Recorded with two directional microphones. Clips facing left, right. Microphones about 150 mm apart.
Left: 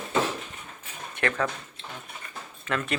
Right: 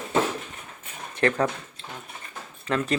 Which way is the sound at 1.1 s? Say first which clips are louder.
Right 5 dB; 35° right (ahead or behind).